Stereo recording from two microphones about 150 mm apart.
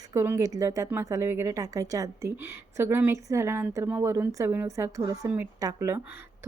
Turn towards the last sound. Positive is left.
turn(degrees=-15)  # may be behind; listen again after turning